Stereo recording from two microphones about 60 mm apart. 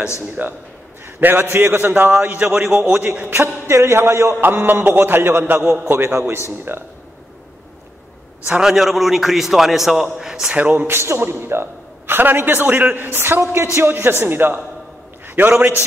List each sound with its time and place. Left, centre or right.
0.4 s speech: right
1.2 s a man's voice: right
3.6 s speech: right
4.4 s a man's voice: right
8.5 s a man's voice: centre
10.5 s a man's voice: right
15.2 s a sound: right